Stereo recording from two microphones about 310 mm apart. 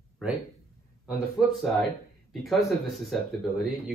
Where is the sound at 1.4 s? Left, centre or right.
Centre.